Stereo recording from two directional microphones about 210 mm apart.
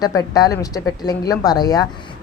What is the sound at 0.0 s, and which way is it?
A woman's voice, 15° left (ahead or behind).